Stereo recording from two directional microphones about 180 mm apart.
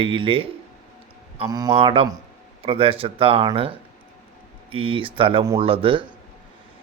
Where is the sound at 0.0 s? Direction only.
30° right (ahead or behind).